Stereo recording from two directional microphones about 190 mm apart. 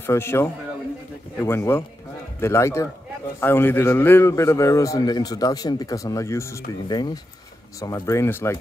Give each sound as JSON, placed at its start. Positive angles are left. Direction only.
{"t": 0.0, "sound": "a man's voice", "side_deg": 10}